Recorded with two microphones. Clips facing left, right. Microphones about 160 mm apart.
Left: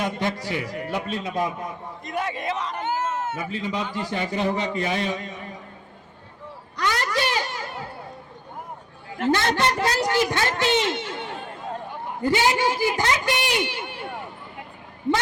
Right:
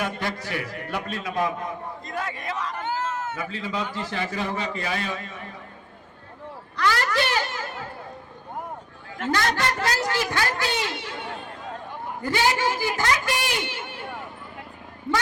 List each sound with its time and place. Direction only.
0.0 s a man's voice: 20° left (ahead or behind)
2.0 s a sound: 20° left (ahead or behind)
3.9 s a woman's voice: 20° left (ahead or behind)
6.7 s a sound: 20° left (ahead or behind)
9.2 s a woman's voice: 25° left (ahead or behind)
12.2 s a woman's voice: 20° left (ahead or behind)